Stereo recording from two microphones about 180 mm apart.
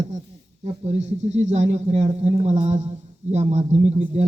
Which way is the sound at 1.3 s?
40° right (ahead or behind).